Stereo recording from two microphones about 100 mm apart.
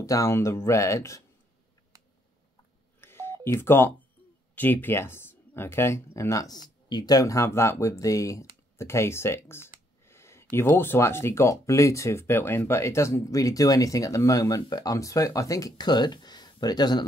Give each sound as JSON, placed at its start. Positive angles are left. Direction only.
{"t": 0.0, "sound": "speech", "side_deg": 35}
{"t": 3.0, "sound": "telephone dialing", "side_deg": 25}
{"t": 4.6, "sound": "speech", "side_deg": 20}
{"t": 10.0, "sound": "a sound", "side_deg": 25}
{"t": 10.5, "sound": "speech", "side_deg": 25}